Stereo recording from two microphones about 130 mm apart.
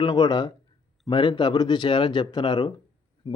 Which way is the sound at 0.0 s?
35° left (ahead or behind).